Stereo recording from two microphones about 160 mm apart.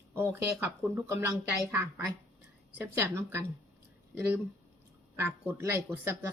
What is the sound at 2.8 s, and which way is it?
Speech, 15° right (ahead or behind).